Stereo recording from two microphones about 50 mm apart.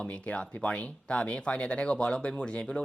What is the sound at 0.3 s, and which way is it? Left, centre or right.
Speech, left.